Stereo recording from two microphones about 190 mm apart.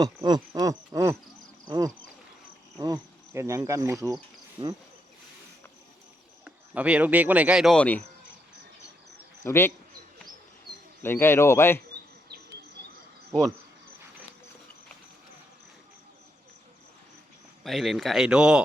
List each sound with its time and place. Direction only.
0.0 s speech: 20° right (ahead or behind)
2.7 s insect: 20° right (ahead or behind)
4.6 s speech: 15° right (ahead or behind)
6.4 s speech: 5° right (ahead or behind)
9.4 s speech: 15° left (ahead or behind)
11.0 s speech: 10° left (ahead or behind)
12.3 s insect: 55° right (ahead or behind)
17.6 s speech: centre (ahead or behind)